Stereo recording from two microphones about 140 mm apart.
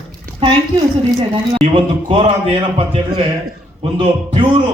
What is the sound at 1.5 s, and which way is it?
Speech, 40° right (ahead or behind).